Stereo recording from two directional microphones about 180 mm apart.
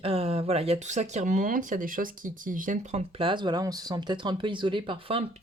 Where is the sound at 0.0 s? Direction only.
30° right (ahead or behind).